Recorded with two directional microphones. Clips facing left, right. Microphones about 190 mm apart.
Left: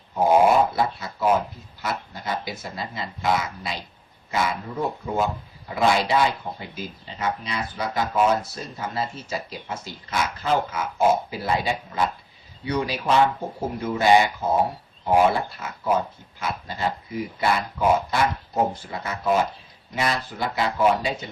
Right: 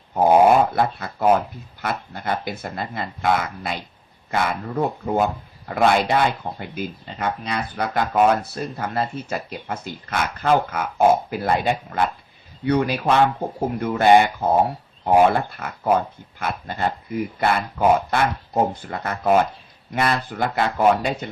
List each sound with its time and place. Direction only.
0.6 s speech: 55° right (ahead or behind)